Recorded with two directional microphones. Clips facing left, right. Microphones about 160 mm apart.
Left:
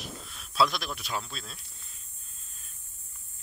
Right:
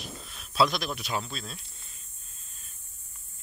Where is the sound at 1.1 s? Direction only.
Centre (ahead or behind).